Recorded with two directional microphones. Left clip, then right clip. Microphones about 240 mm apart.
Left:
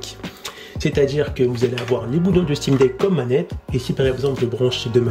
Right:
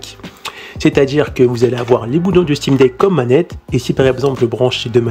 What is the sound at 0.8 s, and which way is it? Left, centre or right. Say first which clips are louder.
Speech: right 6 dB; centre.